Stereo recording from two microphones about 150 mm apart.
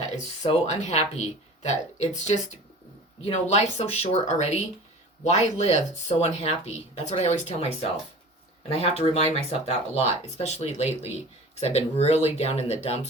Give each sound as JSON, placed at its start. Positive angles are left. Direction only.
{"t": 0.4, "sound": "speech", "side_deg": 45}